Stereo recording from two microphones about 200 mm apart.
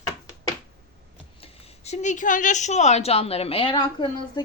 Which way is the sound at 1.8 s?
35° left (ahead or behind).